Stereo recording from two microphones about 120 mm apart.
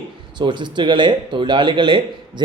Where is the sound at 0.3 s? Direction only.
40° right (ahead or behind).